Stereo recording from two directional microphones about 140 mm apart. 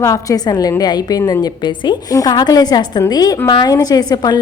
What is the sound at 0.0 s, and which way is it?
A woman's voice, 25° left (ahead or behind).